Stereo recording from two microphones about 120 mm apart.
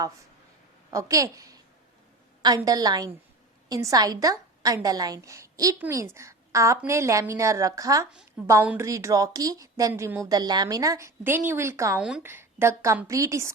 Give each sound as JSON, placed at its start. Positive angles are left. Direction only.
{"t": 0.9, "sound": "a woman's voice", "side_deg": -25}
{"t": 8.4, "sound": "a woman's voice", "side_deg": -15}
{"t": 9.9, "sound": "a woman's voice", "side_deg": -20}
{"t": 11.9, "sound": "a woman's voice", "side_deg": -10}
{"t": 12.2, "sound": "a woman's voice", "side_deg": -20}